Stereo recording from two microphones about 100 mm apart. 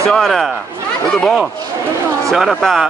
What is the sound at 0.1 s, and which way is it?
Speech, centre (ahead or behind).